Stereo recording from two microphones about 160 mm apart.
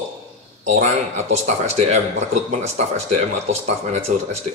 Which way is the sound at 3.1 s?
45° right (ahead or behind).